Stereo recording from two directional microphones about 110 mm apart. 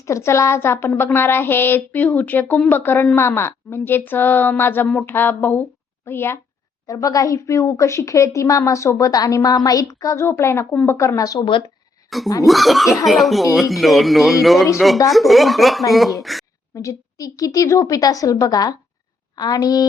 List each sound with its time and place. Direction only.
0.0 s a woman's voice: 25° left (ahead or behind)
6.8 s a woman's voice: 30° left (ahead or behind)
11.3 s speech: 50° left (ahead or behind)
12.1 s speech: centre (ahead or behind)
16.7 s a woman's voice: 30° left (ahead or behind)